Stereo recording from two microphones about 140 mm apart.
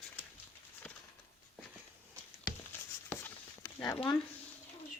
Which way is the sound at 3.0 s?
15° left (ahead or behind).